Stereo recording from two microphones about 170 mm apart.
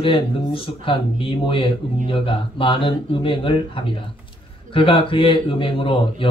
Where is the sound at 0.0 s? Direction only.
30° left (ahead or behind).